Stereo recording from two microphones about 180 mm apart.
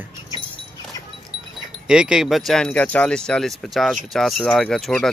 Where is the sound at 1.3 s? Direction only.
30° right (ahead or behind).